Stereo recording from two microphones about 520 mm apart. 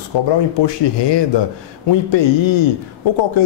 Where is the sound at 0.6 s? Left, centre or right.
Left.